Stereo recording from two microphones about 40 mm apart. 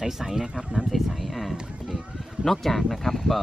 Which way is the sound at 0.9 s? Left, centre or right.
Centre.